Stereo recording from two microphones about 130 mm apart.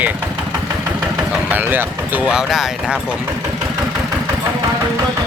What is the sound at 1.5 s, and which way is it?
Speech, 15° right (ahead or behind).